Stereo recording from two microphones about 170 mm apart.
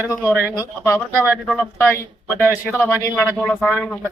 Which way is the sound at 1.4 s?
5° left (ahead or behind).